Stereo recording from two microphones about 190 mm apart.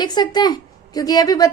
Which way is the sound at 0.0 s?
20° left (ahead or behind).